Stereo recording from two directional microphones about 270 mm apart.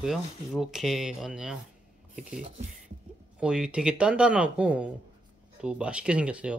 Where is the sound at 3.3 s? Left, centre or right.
Centre.